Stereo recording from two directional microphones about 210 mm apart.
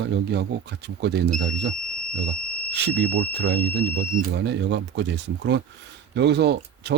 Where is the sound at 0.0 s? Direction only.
55° right (ahead or behind).